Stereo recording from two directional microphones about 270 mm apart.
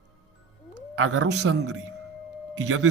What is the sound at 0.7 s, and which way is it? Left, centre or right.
Cat, right.